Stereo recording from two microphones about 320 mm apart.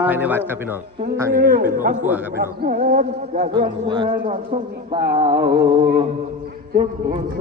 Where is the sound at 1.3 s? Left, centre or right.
Right.